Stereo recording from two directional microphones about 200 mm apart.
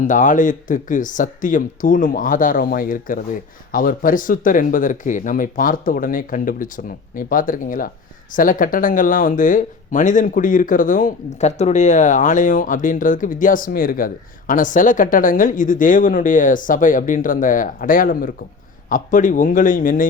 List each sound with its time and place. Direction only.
0.1 s speech: 40° left (ahead or behind)